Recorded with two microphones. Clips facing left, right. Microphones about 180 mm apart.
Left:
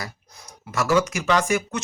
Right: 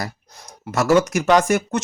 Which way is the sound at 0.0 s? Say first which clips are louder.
Right 6 dB; 60° right (ahead or behind).